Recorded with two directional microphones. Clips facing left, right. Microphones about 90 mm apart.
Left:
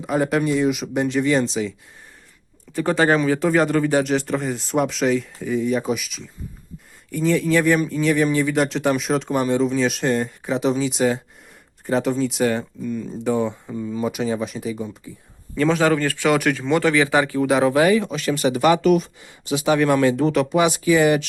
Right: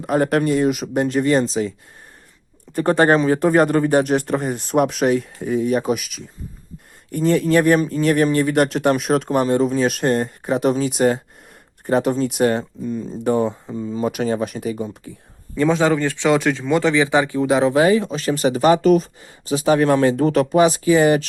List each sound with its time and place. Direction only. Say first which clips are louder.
0.0 s speech: right 2 dB; 50° right (ahead or behind)
2.7 s speech: right 3 dB; 50° right (ahead or behind)
3.2 s speech: right 3 dB; 35° right (ahead or behind)
12.8 s speech: right 1 dB; 30° right (ahead or behind)
13.2 s speech: right 3 dB; 55° right (ahead or behind)
13.7 s a man's voice: right 1 dB; 20° right (ahead or behind)
14.0 s speech: right 3 dB; 50° right (ahead or behind)
15.5 s a man's voice: right 1 dB; 20° right (ahead or behind)